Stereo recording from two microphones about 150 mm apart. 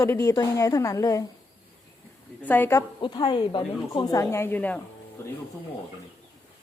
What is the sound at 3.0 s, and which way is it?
A woman's voice, 30° left (ahead or behind).